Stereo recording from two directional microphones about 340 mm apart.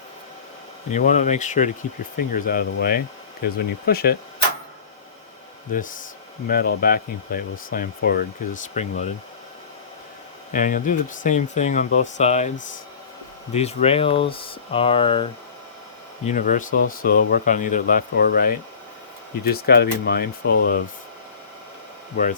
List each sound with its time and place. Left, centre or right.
0.9 s speech: left
5.7 s speech: left
10.5 s speech: left
22.1 s speech: left